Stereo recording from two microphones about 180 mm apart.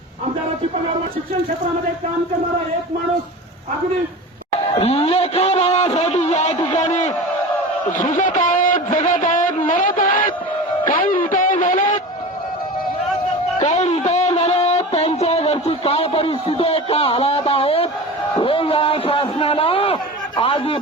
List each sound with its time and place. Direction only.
4.8 s a man's voice: 35° left (ahead or behind); by 10.3 s 50° left (ahead or behind)
10.8 s music: 50° left (ahead or behind)
13.6 s a sound: 40° left (ahead or behind)